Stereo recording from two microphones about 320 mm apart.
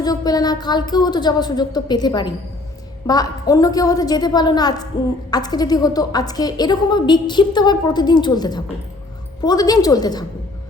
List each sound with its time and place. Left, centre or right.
0.0 s a woman's voice: centre